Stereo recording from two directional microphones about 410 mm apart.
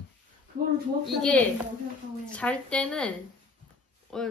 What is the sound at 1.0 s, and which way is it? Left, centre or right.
Speech, centre.